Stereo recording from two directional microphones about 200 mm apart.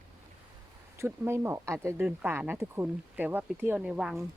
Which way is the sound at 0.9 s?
10° right (ahead or behind).